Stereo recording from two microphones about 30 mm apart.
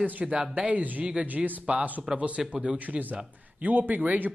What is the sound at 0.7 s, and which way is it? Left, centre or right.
Speech, right.